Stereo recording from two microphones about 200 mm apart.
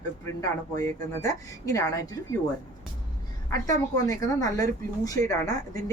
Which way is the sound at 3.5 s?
15° left (ahead or behind).